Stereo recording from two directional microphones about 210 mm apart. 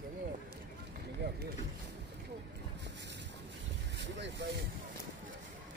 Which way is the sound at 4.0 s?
55° right (ahead or behind).